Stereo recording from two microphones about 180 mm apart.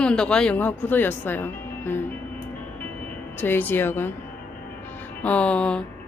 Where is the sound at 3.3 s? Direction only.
10° left (ahead or behind).